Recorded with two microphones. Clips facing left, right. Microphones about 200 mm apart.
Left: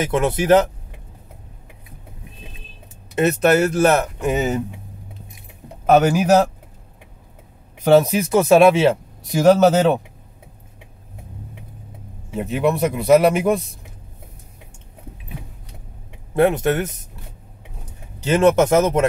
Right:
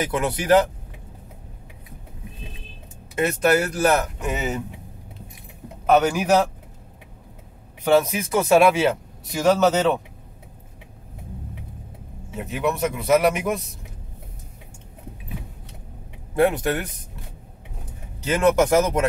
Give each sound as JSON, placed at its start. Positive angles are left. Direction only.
{"t": 0.0, "sound": "speech", "side_deg": 25}
{"t": 3.2, "sound": "speech", "side_deg": 25}
{"t": 4.3, "sound": "speech", "side_deg": 40}
{"t": 5.9, "sound": "speech", "side_deg": 50}
{"t": 7.8, "sound": "speech", "side_deg": 35}
{"t": 12.5, "sound": "speech", "side_deg": 30}
{"t": 16.3, "sound": "speech", "side_deg": 25}
{"t": 18.2, "sound": "speech", "side_deg": 25}